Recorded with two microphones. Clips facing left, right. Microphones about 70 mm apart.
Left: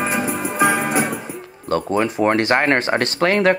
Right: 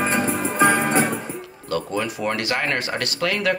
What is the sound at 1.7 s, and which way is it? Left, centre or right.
Speech, left.